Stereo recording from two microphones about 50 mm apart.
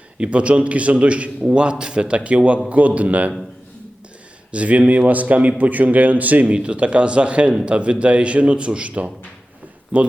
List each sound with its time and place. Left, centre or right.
0.2 s speech: right
4.5 s speech: right